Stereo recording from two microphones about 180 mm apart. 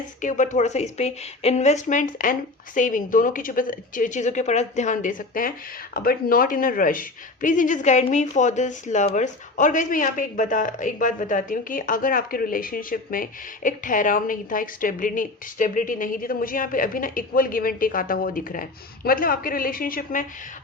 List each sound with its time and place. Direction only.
0.2 s a woman's voice: 45° left (ahead or behind)